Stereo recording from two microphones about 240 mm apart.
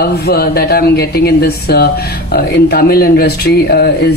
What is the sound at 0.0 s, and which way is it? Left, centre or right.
Speech, left.